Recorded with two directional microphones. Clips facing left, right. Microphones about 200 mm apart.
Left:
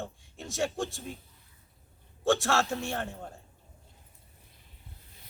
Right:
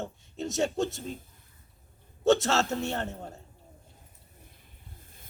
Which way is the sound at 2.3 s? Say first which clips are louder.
Right 3 dB; 20° right (ahead or behind).